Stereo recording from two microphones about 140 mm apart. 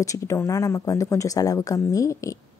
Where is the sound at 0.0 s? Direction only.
25° left (ahead or behind).